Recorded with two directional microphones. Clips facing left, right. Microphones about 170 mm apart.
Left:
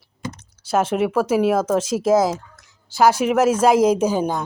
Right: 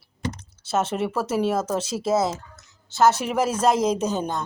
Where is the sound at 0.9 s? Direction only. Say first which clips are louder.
Left 6 dB; 5° left (ahead or behind).